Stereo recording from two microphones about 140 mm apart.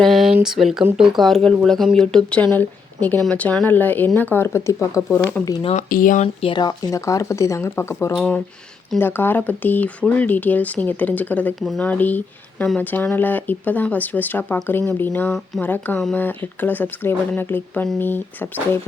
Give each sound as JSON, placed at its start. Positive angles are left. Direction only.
{"t": 0.0, "sound": "a sound", "side_deg": 0}
{"t": 0.4, "sound": "a woman's voice", "side_deg": -5}
{"t": 5.1, "sound": "speech", "side_deg": 10}
{"t": 5.9, "sound": "speech", "side_deg": 75}
{"t": 6.2, "sound": "speech", "side_deg": 40}